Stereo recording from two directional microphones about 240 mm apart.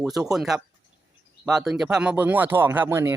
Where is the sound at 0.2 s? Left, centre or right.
Centre.